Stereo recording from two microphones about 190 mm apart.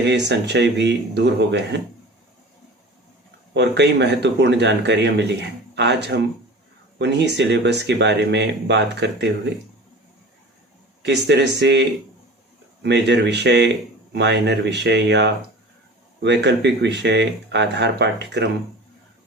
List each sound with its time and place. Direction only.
0.1 s speech: 65° right (ahead or behind)
3.5 s speech: 65° right (ahead or behind)
11.0 s speech: 65° right (ahead or behind)